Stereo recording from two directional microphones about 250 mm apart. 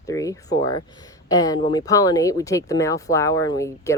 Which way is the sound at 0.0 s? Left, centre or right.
Centre.